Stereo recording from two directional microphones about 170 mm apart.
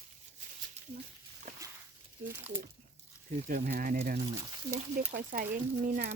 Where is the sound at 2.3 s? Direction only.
10° right (ahead or behind).